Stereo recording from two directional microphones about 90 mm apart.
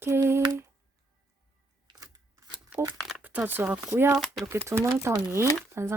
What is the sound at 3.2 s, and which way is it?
Speech, 20° right (ahead or behind).